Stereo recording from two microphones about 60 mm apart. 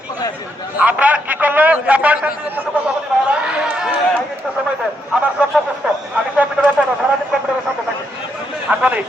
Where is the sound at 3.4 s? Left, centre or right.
Centre.